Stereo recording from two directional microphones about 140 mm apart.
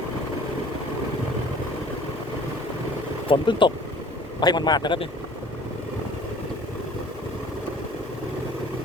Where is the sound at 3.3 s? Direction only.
35° left (ahead or behind).